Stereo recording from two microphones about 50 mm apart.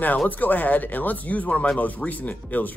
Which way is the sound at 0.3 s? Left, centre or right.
Left.